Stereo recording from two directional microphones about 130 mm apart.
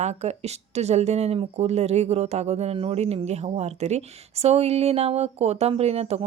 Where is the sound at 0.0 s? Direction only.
60° right (ahead or behind).